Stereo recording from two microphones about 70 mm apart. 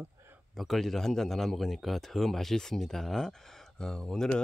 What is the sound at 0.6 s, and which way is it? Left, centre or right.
A man's voice, centre.